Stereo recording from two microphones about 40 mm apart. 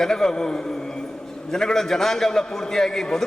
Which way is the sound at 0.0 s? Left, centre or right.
Centre.